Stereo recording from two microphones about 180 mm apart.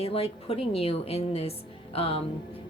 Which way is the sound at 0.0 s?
35° left (ahead or behind).